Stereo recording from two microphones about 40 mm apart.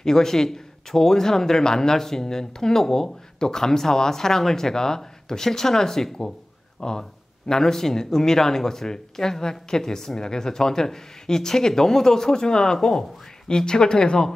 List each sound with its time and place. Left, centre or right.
0.0 s a man's voice: centre
13.5 s speech: centre